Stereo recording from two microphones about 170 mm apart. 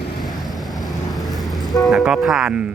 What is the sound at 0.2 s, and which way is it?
Vehicle, centre (ahead or behind).